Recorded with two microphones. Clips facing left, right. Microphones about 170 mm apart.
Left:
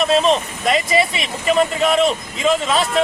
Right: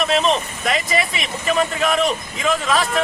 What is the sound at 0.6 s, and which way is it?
Vehicle, 25° left (ahead or behind).